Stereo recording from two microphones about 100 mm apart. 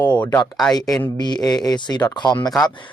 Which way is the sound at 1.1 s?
45° left (ahead or behind).